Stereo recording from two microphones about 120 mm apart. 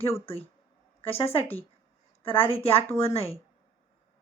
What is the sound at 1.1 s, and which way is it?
Speech, 55° left (ahead or behind).